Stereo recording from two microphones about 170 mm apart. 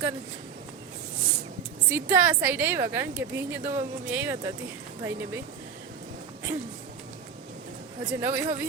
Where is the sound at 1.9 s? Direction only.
15° right (ahead or behind).